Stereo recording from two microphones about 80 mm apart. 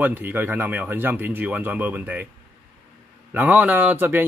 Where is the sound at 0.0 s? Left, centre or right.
Right.